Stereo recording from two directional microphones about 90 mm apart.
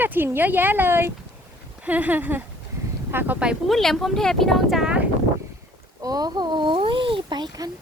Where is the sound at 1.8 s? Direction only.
15° right (ahead or behind).